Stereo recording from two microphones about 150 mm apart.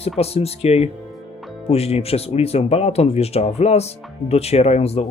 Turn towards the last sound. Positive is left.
turn(degrees=45)  # may be behind; listen again after turning